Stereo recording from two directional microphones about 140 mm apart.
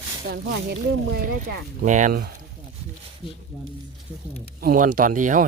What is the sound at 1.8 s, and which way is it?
Speech, 60° right (ahead or behind).